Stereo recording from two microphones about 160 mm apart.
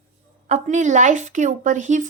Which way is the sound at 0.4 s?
45° right (ahead or behind).